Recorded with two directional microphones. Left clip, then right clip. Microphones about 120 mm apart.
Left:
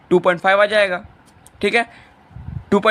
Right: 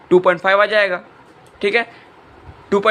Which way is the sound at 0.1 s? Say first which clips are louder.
Right 1 dB; 35° left (ahead or behind).